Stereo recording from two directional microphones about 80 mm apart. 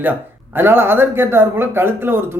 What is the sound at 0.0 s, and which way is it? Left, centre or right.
Speech, right.